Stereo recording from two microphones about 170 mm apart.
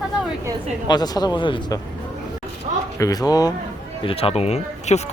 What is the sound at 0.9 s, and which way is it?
Speech, 25° left (ahead or behind).